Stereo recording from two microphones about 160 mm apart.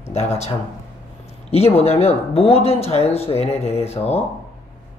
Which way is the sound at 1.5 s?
40° left (ahead or behind).